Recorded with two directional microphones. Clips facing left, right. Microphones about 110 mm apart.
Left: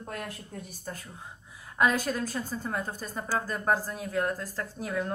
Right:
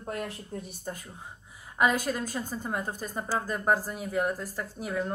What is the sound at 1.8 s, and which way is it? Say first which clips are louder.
A woman's voice: even; 10° right (ahead or behind).